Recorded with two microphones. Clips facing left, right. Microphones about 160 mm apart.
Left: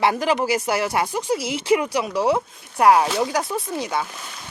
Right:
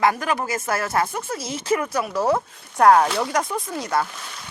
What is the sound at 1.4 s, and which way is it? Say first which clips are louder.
Speech: left 3 dB; 65° left (ahead or behind).